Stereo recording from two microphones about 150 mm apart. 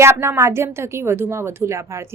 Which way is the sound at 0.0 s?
20° right (ahead or behind).